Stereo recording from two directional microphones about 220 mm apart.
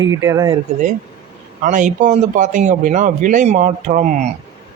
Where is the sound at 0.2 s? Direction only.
15° right (ahead or behind).